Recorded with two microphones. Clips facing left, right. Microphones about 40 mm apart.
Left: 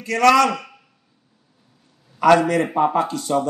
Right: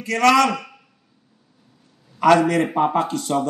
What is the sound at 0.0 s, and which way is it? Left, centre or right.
Speech, right.